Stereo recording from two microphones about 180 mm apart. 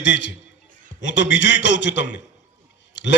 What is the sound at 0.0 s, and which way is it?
A man's voice, 80° left.